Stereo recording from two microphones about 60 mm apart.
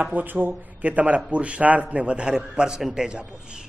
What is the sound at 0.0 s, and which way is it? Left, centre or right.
Speech, right.